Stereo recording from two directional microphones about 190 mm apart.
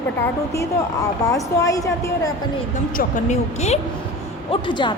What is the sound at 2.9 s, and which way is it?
Speech, 35° left (ahead or behind).